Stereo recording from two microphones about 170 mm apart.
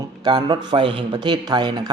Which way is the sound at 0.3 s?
25° right (ahead or behind).